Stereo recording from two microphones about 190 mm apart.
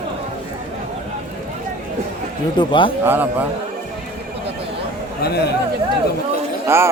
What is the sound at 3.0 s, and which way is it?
Speech, 10° right (ahead or behind).